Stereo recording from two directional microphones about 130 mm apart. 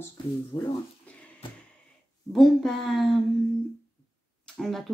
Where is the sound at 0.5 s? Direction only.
25° left (ahead or behind).